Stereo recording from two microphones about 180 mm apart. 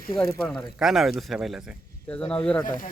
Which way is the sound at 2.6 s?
50° left (ahead or behind).